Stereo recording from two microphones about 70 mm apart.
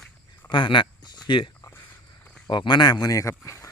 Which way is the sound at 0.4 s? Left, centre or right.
Left.